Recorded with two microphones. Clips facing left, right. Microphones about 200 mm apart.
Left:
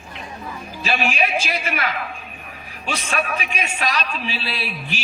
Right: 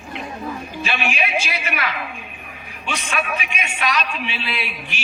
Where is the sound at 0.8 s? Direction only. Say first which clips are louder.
Left 3 dB; 35° left (ahead or behind).